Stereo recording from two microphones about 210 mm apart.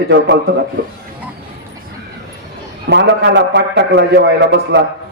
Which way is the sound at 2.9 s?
55° right (ahead or behind).